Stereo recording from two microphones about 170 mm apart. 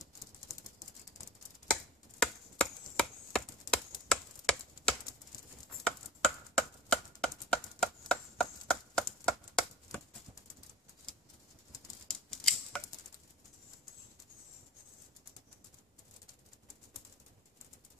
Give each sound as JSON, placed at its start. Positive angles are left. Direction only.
{"t": 0.5, "sound": "ratchet", "side_deg": 20}
{"t": 1.7, "sound": "chopping", "side_deg": 5}
{"t": 5.9, "sound": "a sound", "side_deg": 5}
{"t": 12.1, "sound": "scissors", "side_deg": 5}